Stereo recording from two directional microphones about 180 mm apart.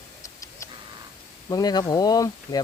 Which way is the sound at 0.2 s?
20° left (ahead or behind).